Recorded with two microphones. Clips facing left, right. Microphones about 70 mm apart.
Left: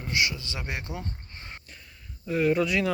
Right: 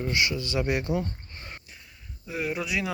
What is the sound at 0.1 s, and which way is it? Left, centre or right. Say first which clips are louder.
Speech: left 1 dB; centre.